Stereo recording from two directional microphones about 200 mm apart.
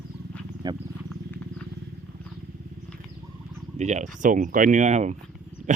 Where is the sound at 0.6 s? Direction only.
20° right (ahead or behind).